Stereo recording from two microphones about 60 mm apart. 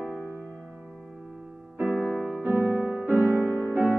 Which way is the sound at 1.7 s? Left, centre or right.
Right.